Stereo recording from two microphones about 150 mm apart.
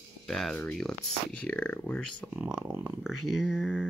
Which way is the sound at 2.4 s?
10° right (ahead or behind).